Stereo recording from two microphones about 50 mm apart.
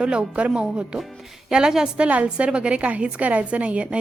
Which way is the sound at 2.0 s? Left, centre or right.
Right.